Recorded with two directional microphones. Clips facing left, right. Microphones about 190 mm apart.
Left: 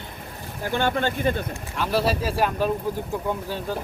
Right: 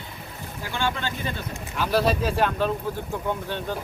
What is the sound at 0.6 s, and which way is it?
Speech, 50° left (ahead or behind).